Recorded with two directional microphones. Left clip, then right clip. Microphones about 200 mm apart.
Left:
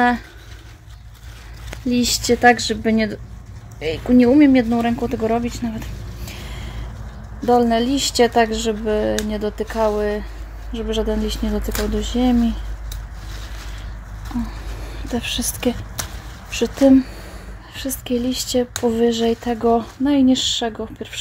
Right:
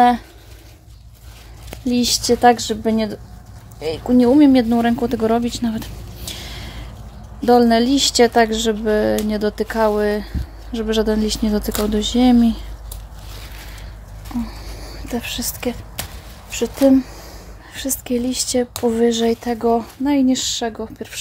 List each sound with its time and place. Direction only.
1.9 s speech: 10° right (ahead or behind); by 12.5 s 30° right (ahead or behind)
14.3 s speech: 15° right (ahead or behind)
15.0 s speech: centre (ahead or behind)
17.7 s speech: 10° right (ahead or behind)